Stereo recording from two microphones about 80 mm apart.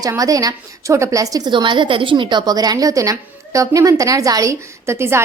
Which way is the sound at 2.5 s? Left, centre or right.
Right.